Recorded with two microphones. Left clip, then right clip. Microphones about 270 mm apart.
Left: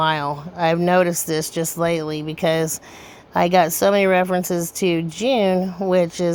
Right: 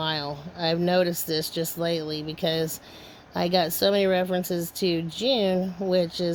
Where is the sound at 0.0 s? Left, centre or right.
Centre.